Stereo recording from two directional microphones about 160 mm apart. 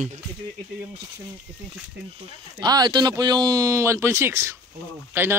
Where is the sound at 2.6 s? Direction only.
25° right (ahead or behind).